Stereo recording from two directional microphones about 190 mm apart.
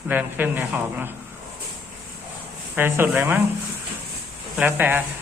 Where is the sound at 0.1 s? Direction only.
10° right (ahead or behind).